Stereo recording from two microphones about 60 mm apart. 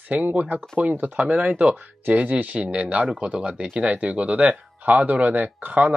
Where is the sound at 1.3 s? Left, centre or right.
Centre.